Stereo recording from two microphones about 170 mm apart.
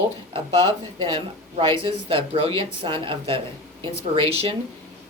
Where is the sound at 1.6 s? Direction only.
30° right (ahead or behind).